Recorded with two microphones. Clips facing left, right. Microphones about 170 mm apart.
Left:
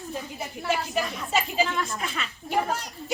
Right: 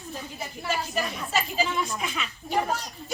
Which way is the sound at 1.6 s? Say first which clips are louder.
Even; centre (ahead or behind).